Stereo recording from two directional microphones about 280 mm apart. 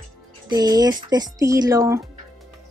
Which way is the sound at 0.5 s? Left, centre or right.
Centre.